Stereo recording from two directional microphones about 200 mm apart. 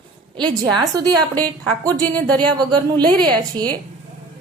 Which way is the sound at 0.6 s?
20° right (ahead or behind).